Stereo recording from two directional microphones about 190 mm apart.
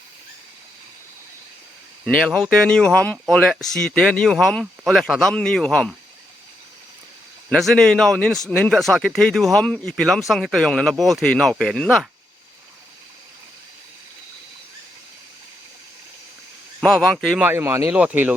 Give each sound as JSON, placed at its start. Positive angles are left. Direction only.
{"t": 2.0, "sound": "speech", "side_deg": 5}
{"t": 7.5, "sound": "speech", "side_deg": 0}
{"t": 16.8, "sound": "speech", "side_deg": 5}
{"t": 17.4, "sound": "speech", "side_deg": -10}